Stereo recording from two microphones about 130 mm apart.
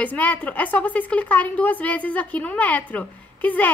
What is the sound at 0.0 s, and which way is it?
A woman's voice, 15° left (ahead or behind).